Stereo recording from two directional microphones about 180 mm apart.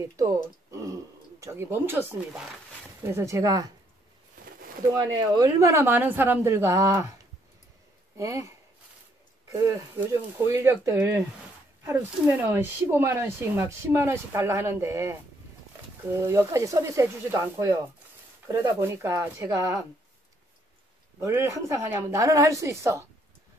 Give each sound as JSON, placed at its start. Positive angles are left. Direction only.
{"t": 0.2, "sound": "speech", "side_deg": -15}
{"t": 4.9, "sound": "speech", "side_deg": -25}
{"t": 8.2, "sound": "speech", "side_deg": -15}
{"t": 21.2, "sound": "speech", "side_deg": -15}